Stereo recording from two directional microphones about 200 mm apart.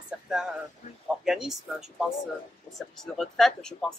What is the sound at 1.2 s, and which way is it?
Speech, centre (ahead or behind).